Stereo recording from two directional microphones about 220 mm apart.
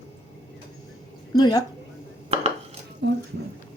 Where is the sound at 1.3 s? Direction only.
15° left (ahead or behind).